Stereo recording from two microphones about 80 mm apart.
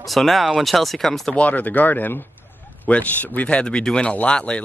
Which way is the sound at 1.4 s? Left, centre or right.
Left.